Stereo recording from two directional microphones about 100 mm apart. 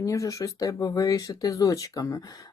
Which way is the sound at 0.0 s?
35° left (ahead or behind).